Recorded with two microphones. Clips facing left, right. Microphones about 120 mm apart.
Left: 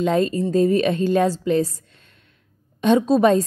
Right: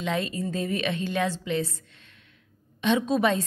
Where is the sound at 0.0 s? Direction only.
40° left (ahead or behind).